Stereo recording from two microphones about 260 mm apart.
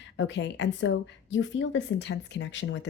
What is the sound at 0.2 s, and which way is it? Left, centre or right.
A woman's voice, left.